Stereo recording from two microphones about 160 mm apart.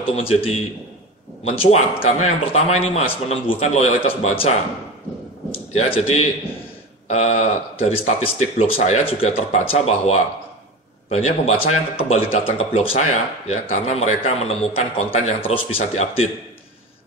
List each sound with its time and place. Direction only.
0.1 s a man's voice: 35° left (ahead or behind)